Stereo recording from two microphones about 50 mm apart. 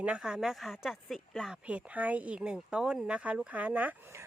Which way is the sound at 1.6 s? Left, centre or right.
Right.